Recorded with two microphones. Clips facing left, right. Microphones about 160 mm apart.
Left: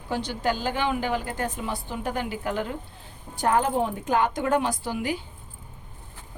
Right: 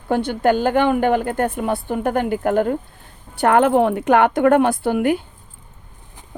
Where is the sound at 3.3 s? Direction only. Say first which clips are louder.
Right 8 dB; 70° right (ahead or behind).